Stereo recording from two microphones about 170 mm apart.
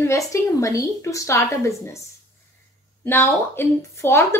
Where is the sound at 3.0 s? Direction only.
15° left (ahead or behind).